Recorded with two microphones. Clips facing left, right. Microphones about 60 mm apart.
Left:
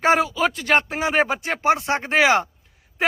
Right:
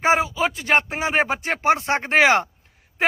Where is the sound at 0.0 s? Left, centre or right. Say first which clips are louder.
Left 1 dB; centre.